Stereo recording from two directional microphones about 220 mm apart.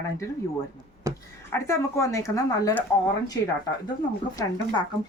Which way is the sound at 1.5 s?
15° left (ahead or behind).